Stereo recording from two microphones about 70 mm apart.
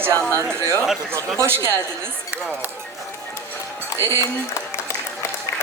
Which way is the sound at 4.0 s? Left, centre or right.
Left.